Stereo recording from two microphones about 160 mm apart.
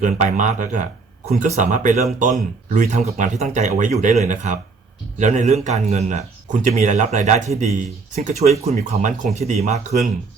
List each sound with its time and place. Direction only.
0.0 s speech: 50° right (ahead or behind)